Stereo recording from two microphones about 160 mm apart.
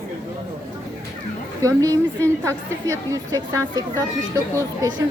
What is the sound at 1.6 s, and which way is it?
Speech, 20° right (ahead or behind).